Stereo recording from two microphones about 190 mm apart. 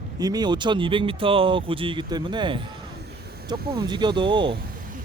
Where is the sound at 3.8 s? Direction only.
25° right (ahead or behind).